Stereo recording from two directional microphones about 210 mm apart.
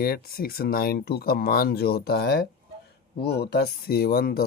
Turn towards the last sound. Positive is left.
turn(degrees=45)  # may be behind; listen again after turning